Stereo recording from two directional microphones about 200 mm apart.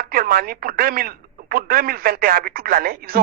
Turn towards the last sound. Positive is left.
turn(degrees=-50)  # may be behind; listen again after turning